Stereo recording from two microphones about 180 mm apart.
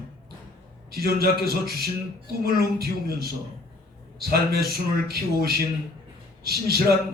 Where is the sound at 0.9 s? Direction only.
60° right (ahead or behind).